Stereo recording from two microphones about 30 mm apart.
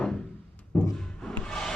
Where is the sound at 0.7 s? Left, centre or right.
Left.